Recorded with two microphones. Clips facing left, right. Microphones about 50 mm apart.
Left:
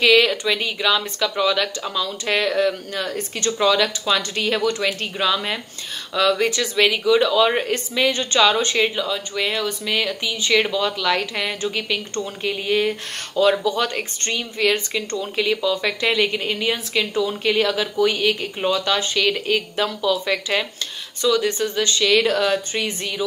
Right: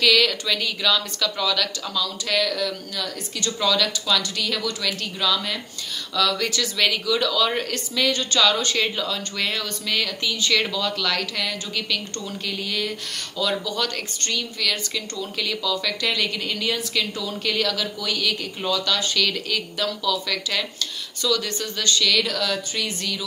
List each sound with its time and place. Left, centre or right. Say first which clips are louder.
0.0 s speech: left 4 dB; left
3.5 s speech: left 4 dB; left
8.8 s speech: left 3 dB; centre